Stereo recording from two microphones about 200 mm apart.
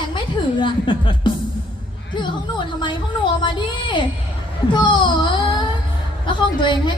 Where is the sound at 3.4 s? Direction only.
25° left (ahead or behind).